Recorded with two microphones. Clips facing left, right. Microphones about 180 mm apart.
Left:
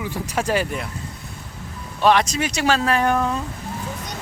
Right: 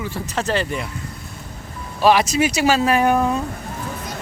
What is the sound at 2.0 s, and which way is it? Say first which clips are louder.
Speech: right 2 dB; 5° right (ahead or behind).